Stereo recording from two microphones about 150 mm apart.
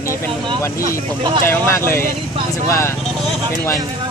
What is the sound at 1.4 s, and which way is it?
Speech, 15° left (ahead or behind).